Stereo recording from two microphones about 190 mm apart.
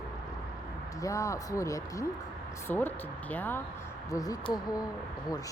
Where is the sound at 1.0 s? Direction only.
15° left (ahead or behind).